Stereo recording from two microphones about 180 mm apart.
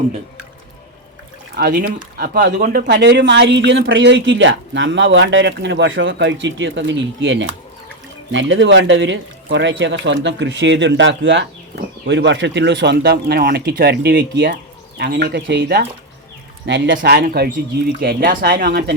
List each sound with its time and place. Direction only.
1.5 s speech: 60° right (ahead or behind)
2.8 s speech: 70° right (ahead or behind)